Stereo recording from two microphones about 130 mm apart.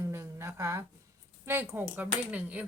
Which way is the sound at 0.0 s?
20° right (ahead or behind).